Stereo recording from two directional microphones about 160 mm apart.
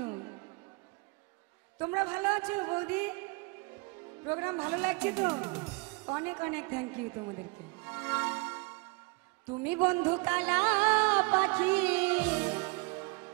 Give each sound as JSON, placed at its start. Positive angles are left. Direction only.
{"t": 0.0, "sound": "music", "side_deg": -25}
{"t": 1.8, "sound": "a man's voice", "side_deg": -15}
{"t": 6.0, "sound": "music", "side_deg": -20}